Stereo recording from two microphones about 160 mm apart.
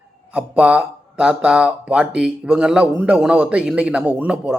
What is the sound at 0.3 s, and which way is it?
A man's voice, 10° right (ahead or behind).